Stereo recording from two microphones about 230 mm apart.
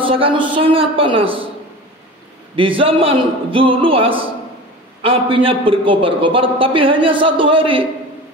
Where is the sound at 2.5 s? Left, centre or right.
Right.